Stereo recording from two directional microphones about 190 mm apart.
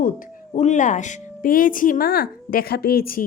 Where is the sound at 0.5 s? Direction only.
40° left (ahead or behind).